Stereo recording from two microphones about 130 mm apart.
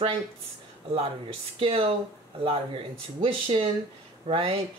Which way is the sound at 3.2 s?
45° right (ahead or behind).